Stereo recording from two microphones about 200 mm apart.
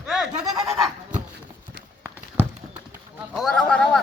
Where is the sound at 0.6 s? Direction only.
Centre (ahead or behind).